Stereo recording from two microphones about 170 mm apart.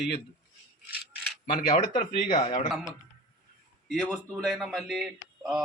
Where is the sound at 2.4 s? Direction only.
40° left (ahead or behind).